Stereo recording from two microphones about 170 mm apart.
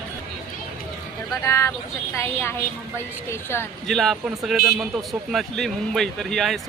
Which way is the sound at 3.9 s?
Centre (ahead or behind).